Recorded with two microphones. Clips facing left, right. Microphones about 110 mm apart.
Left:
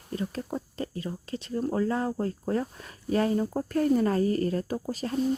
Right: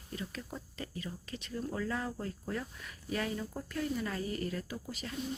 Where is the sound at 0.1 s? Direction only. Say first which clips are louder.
Left 10 dB; 40° left (ahead or behind).